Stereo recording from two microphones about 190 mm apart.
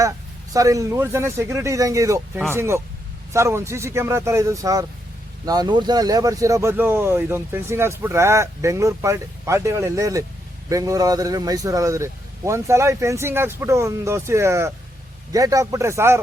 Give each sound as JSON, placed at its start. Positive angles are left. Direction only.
{"t": 0.5, "sound": "speech", "side_deg": -15}